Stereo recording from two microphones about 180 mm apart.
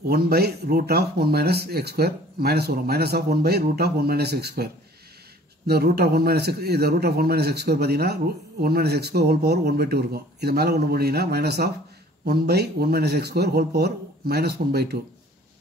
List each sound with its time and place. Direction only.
0.0 s a man's voice: 60° right (ahead or behind)
5.7 s a man's voice: 60° right (ahead or behind)